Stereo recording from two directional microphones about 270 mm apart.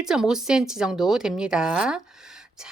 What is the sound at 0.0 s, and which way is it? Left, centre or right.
Speech, centre.